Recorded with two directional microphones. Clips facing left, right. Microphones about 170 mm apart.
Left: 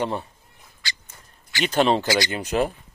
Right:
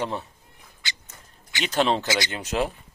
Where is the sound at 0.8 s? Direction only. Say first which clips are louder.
Left 1 dB; 20° right (ahead or behind).